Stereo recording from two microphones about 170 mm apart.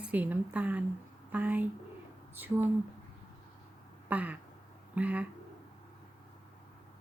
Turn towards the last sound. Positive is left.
turn(degrees=-10)  # may be behind; listen again after turning